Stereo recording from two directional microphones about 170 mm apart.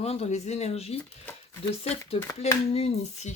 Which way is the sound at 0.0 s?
35° left (ahead or behind).